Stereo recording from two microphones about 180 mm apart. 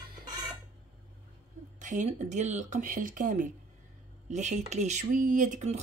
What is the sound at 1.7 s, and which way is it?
Speech, 45° right (ahead or behind).